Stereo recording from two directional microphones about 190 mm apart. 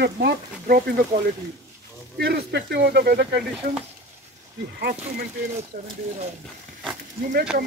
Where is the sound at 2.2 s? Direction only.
55° right (ahead or behind).